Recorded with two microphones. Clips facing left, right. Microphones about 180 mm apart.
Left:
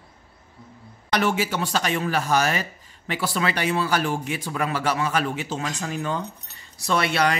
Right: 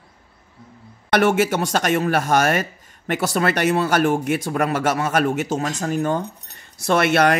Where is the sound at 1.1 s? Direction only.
50° right (ahead or behind).